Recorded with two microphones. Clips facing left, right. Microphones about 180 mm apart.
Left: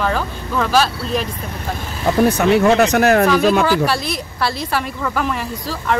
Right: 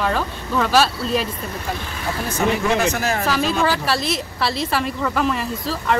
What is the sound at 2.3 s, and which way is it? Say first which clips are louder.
Speech: left 3 dB; 65° left (ahead or behind).